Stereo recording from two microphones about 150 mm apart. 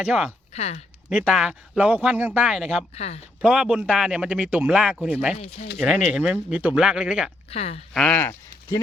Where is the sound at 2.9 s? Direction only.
45° left (ahead or behind).